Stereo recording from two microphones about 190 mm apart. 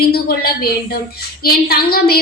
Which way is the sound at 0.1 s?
55° left (ahead or behind).